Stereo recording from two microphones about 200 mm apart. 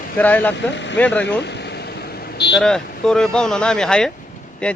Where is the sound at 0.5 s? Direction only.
60° left (ahead or behind).